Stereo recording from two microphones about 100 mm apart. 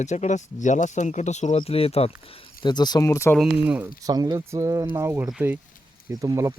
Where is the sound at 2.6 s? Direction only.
45° left (ahead or behind).